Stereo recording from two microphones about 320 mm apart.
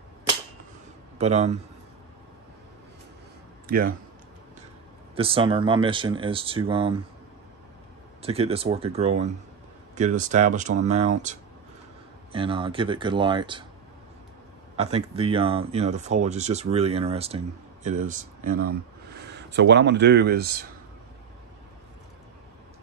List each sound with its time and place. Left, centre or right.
1.1 s speech: centre
3.6 s speech: right
5.1 s speech: centre
8.2 s speech: centre
14.8 s speech: centre